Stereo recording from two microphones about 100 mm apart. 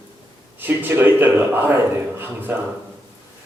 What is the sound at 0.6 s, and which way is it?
A man's voice, 20° right (ahead or behind).